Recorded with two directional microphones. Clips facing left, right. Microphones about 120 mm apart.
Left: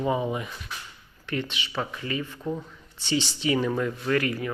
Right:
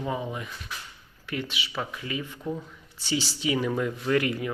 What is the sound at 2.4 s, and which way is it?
Speech, 5° left (ahead or behind).